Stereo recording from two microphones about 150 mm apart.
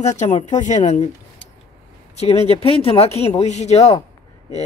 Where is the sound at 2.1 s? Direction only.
45° left (ahead or behind).